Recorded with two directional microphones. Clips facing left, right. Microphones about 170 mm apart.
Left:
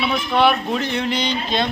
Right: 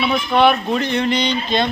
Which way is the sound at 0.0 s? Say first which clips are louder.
Right 2 dB; centre (ahead or behind).